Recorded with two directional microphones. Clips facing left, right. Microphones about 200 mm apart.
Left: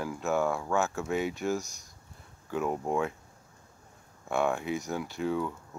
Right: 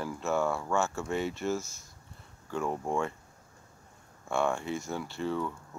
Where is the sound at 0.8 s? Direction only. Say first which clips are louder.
Left 1 dB; centre (ahead or behind).